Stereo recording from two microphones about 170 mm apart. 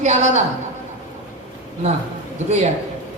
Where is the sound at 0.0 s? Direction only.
45° right (ahead or behind).